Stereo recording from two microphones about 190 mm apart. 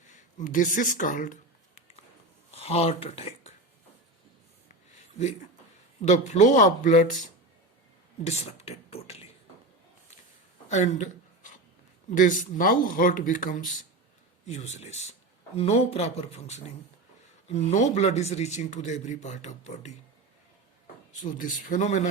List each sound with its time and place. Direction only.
0.0 s a sound: 40° left (ahead or behind)
2.5 s speech: 35° left (ahead or behind)
6.0 s speech: 40° left (ahead or behind)
10.7 s a sound: 40° left (ahead or behind)
12.1 s speech: 45° left (ahead or behind)
21.2 s speech: 45° left (ahead or behind)